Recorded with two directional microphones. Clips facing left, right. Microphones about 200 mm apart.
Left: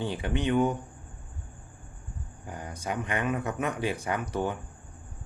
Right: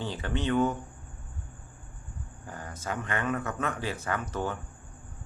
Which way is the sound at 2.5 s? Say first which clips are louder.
Left 2 dB; 15° left (ahead or behind).